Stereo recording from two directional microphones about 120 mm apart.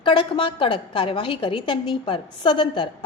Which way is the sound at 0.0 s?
40° left (ahead or behind).